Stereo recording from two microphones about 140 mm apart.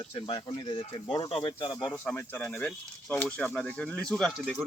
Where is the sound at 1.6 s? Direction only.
25° left (ahead or behind).